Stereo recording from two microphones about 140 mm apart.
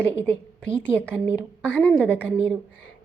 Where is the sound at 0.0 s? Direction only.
10° left (ahead or behind).